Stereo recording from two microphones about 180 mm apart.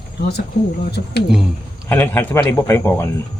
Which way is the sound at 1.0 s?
50° left (ahead or behind).